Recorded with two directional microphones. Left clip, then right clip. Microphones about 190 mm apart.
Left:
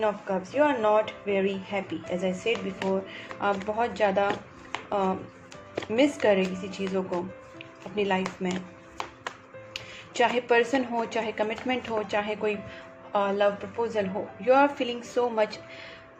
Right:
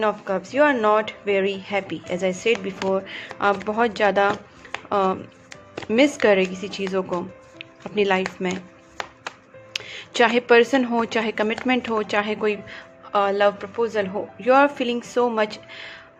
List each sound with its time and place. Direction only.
0.0 s a woman's voice: 45° right (ahead or behind)
9.7 s a woman's voice: 40° right (ahead or behind)